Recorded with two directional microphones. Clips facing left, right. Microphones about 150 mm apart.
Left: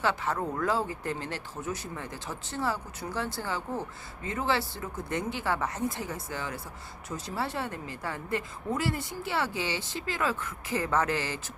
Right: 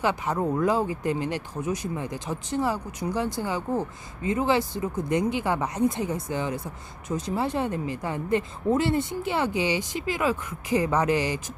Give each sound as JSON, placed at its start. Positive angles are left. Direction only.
{"t": 0.0, "sound": "speech", "side_deg": -15}